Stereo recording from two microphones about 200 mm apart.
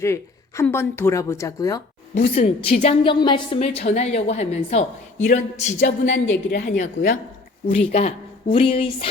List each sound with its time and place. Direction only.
0.0 s a woman's voice: 15° left (ahead or behind)
2.1 s a woman's voice: 35° left (ahead or behind)
5.8 s a woman's voice: 65° left (ahead or behind)
6.7 s a woman's voice: 40° left (ahead or behind)